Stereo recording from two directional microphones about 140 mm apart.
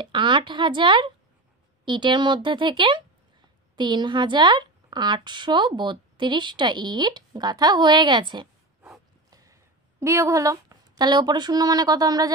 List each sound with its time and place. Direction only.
0.0 s a woman's voice: 35° right (ahead or behind)
9.3 s speech: 25° right (ahead or behind)